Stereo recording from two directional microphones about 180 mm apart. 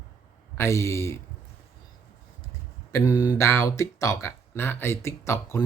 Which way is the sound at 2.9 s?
20° left (ahead or behind).